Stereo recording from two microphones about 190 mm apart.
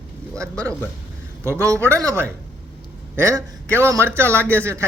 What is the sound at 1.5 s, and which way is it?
Speech, 15° right (ahead or behind).